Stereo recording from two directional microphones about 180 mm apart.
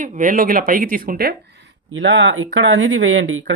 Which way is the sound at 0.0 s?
45° right (ahead or behind).